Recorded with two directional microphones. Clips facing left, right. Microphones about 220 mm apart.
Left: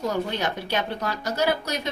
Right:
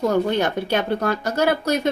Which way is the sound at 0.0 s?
55° right (ahead or behind).